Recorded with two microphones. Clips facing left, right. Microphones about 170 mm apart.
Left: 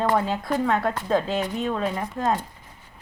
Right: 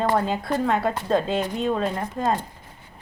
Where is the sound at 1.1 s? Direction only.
Centre (ahead or behind).